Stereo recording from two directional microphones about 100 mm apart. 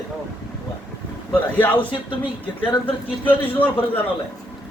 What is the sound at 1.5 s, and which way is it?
Speech, 15° left (ahead or behind).